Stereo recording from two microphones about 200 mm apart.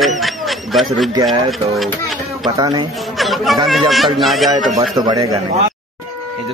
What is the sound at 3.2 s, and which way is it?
Speech, centre (ahead or behind).